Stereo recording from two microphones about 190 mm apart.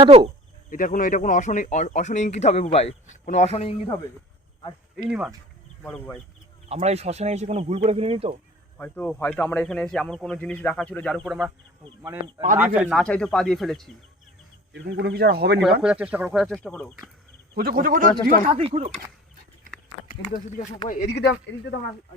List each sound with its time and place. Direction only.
0.0 s speech: 25° right (ahead or behind)
0.7 s speech: 45° left (ahead or behind)
5.8 s speech: 5° left (ahead or behind)
6.7 s speech: 35° right (ahead or behind)
8.8 s speech: 10° left (ahead or behind)
12.5 s speech: 10° right (ahead or behind)
14.7 s speech: 65° right (ahead or behind)
15.8 s speech: 5° right (ahead or behind)
17.5 s a man's voice: 50° right (ahead or behind)
18.4 s speech: 35° right (ahead or behind)
20.8 s speech: 55° left (ahead or behind)